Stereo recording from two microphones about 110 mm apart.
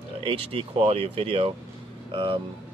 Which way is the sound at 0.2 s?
60° right (ahead or behind).